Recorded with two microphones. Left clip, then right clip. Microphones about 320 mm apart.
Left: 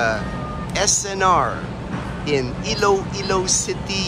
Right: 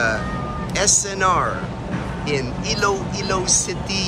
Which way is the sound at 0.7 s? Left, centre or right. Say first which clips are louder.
Even; centre.